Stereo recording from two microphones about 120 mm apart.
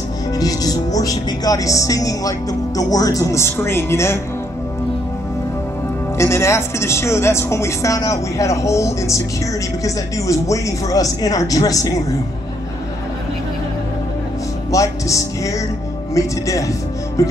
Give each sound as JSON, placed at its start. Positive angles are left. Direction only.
{"t": 0.4, "sound": "speech", "side_deg": 30}
{"t": 6.1, "sound": "speech", "side_deg": 25}
{"t": 14.7, "sound": "music", "side_deg": 25}
{"t": 16.2, "sound": "speech", "side_deg": 25}